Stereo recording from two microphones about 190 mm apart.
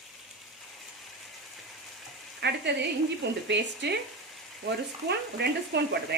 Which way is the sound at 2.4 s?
60° right (ahead or behind).